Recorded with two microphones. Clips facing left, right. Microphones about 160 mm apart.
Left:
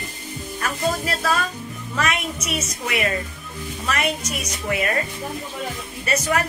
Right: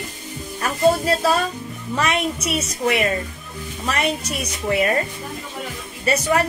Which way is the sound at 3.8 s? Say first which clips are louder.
Right 2 dB; 30° right (ahead or behind).